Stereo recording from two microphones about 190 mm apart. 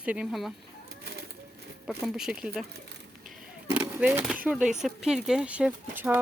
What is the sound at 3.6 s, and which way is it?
Speech, 5° right (ahead or behind).